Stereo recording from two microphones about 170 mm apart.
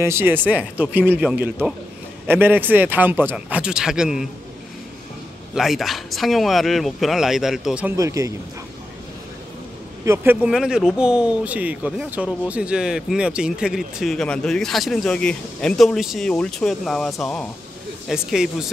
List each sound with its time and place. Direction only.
0.0 s a man's voice: 15° right (ahead or behind)
5.5 s speech: centre (ahead or behind)
7.9 s speech: 20° right (ahead or behind)
10.0 s a man's voice: 15° right (ahead or behind)